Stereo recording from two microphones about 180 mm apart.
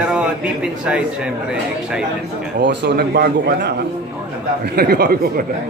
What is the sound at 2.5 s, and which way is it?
A man's voice, 65° right (ahead or behind).